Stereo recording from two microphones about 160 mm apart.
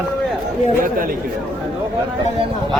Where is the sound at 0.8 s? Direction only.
60° right (ahead or behind).